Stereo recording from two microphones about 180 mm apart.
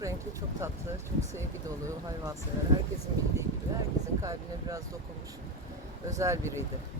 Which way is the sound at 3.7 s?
20° right (ahead or behind).